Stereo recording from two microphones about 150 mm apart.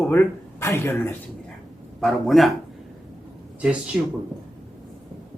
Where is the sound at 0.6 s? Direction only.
15° left (ahead or behind).